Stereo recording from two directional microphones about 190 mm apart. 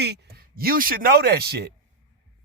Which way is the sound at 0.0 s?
55° right (ahead or behind).